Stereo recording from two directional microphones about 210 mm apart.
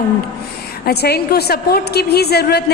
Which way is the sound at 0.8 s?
50° left (ahead or behind).